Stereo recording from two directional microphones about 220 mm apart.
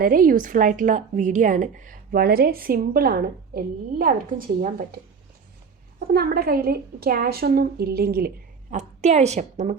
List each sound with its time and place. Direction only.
0.0 s a woman's voice: 40° right (ahead or behind)
6.1 s a woman's voice: 45° right (ahead or behind)
8.7 s a woman's voice: 30° right (ahead or behind)